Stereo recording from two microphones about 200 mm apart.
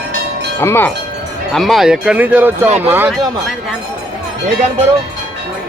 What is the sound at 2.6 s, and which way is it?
Speech, 35° right (ahead or behind).